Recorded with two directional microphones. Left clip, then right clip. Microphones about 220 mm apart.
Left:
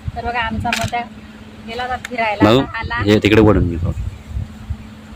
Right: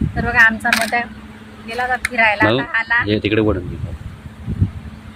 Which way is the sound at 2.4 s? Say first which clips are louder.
Left 2 dB; 35° left (ahead or behind).